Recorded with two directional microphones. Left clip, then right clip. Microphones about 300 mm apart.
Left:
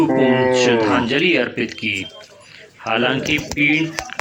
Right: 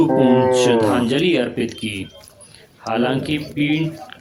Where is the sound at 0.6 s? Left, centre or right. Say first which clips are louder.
Even; right.